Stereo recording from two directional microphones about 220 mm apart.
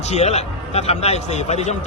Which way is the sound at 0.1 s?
30° left (ahead or behind).